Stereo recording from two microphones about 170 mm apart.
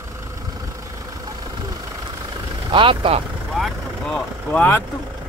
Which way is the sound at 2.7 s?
30° right (ahead or behind).